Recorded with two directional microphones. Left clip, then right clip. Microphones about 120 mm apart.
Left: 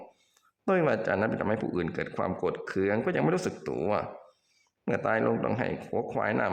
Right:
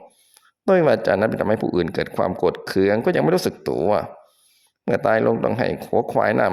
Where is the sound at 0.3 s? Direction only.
40° right (ahead or behind).